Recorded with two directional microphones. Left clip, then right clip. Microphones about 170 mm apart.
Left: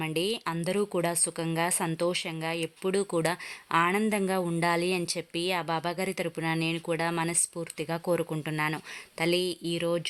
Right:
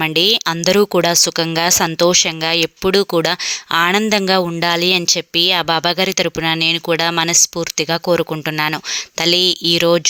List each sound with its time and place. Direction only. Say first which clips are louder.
0.0 s speech: right 16 dB; 30° right (ahead or behind)